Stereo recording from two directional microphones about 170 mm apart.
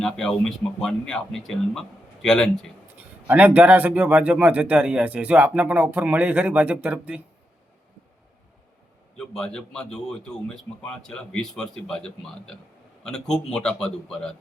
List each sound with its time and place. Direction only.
0.0 s a man's voice: 5° left (ahead or behind)
3.2 s speech: 10° right (ahead or behind)
9.1 s a man's voice: 5° left (ahead or behind)